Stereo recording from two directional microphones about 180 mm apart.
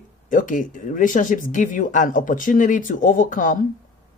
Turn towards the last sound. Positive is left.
turn(degrees=45)  # may be behind; listen again after turning